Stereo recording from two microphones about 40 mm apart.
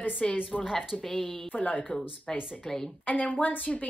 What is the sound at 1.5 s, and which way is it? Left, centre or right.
Speech, left.